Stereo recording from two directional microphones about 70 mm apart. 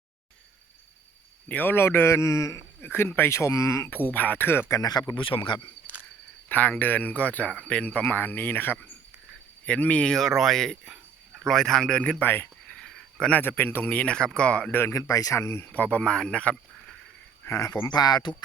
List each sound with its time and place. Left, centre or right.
1.5 s a man's voice: left
2.8 s speech: left
3.8 s speech: left
4.7 s speech: left
5.5 s speech: left
6.5 s speech: left
10.1 s speech: centre
12.7 s cricket: centre
13.4 s speech: left
14.7 s a man's voice: left
14.9 s speech: left
15.4 s a man's voice: left
15.7 s speech: left
17.7 s speech: left